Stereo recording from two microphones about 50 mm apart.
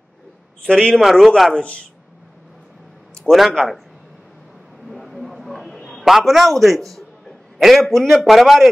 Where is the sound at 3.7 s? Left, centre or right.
Centre.